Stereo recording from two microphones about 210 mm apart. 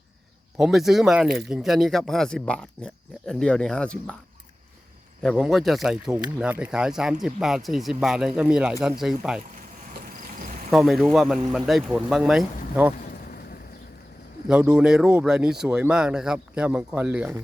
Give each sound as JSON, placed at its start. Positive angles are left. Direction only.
{"t": 0.5, "sound": "speech", "side_deg": 0}
{"t": 5.2, "sound": "speech", "side_deg": 0}
{"t": 10.7, "sound": "speech", "side_deg": 0}
{"t": 13.1, "sound": "a sound", "side_deg": 45}
{"t": 14.4, "sound": "speech", "side_deg": -5}